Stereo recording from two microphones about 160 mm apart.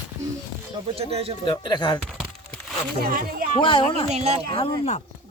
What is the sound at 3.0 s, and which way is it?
Speech, 65° right (ahead or behind).